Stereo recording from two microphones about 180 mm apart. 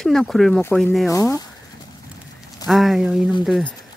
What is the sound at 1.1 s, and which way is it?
Speech, 20° left (ahead or behind).